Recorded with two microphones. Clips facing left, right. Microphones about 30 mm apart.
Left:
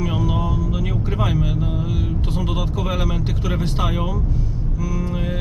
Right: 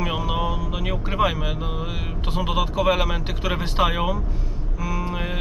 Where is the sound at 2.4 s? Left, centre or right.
Right.